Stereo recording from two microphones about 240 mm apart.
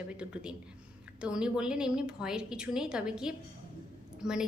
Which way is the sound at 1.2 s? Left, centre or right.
Centre.